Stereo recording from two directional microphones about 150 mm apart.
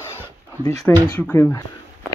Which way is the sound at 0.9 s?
10° left (ahead or behind).